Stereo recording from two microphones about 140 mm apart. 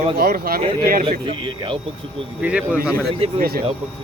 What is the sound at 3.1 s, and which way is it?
Speech, 45° right (ahead or behind).